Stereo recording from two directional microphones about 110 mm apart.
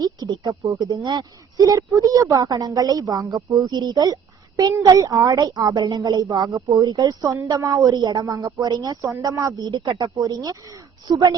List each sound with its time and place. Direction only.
0.0 s a woman's voice: 35° right (ahead or behind)